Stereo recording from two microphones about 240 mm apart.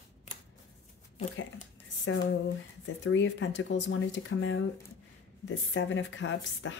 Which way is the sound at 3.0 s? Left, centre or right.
Left.